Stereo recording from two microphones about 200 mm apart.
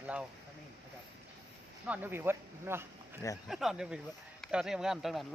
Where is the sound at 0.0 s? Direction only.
5° right (ahead or behind).